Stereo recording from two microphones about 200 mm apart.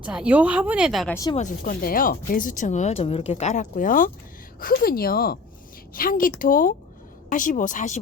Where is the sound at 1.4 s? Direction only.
40° left (ahead or behind).